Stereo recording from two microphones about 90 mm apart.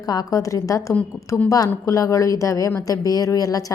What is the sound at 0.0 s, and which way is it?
A woman's voice, 45° left (ahead or behind).